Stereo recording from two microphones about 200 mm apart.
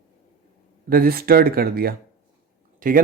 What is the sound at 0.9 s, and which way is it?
Speech, 50° right (ahead or behind).